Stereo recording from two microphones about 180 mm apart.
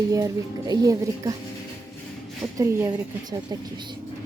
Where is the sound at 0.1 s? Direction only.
20° right (ahead or behind).